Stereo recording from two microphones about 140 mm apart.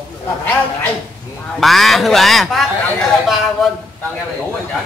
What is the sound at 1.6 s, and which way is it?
A man's voice, centre (ahead or behind).